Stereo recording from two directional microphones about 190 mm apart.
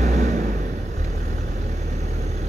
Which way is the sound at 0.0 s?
40° right (ahead or behind).